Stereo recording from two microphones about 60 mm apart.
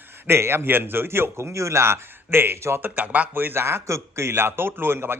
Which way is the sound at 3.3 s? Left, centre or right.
Right.